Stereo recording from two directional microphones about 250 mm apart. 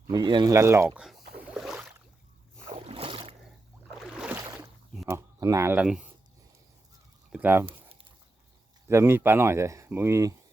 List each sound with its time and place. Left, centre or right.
0.1 s speech: centre
1.4 s boat: centre
2.7 s boat: right
3.9 s boat: centre
5.0 s speech: centre
7.3 s speech: centre
7.6 s a sound: centre
8.9 s speech: centre